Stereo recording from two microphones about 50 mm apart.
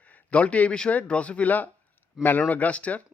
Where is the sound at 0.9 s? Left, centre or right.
Left.